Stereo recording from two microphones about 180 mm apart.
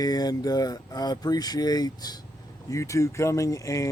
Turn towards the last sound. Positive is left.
turn(degrees=15)  # may be behind; listen again after turning